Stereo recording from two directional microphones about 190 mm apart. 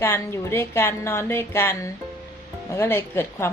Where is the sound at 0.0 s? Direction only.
15° left (ahead or behind).